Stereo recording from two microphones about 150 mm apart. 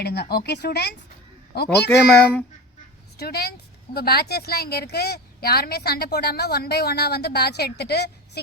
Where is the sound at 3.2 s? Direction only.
90° left.